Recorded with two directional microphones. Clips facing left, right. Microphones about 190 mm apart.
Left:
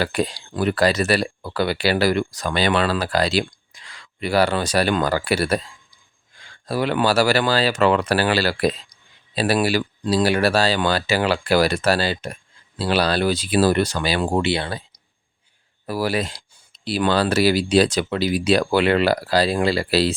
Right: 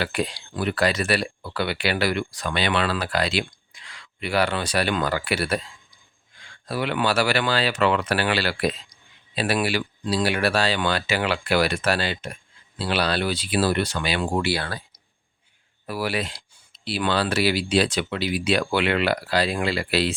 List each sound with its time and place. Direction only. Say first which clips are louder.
0.0 s speech: left 4 dB; 40° left (ahead or behind)
6.7 s speech: left 4 dB; 40° left (ahead or behind)
14.4 s speech: left 3 dB; 20° left (ahead or behind)
15.9 s speech: left 4 dB; 40° left (ahead or behind)